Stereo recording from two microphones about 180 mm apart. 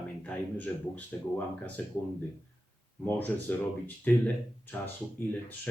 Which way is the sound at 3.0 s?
10° left (ahead or behind).